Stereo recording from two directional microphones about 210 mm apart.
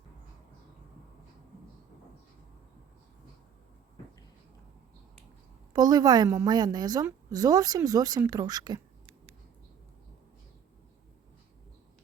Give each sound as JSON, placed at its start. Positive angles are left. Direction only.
{"t": 5.7, "sound": "a woman's voice", "side_deg": -20}